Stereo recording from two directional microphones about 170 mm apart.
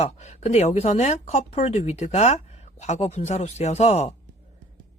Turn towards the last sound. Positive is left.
turn(degrees=40)  # may be behind; listen again after turning